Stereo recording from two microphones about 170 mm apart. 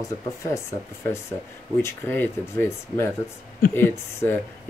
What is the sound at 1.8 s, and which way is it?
Speech, 15° left (ahead or behind).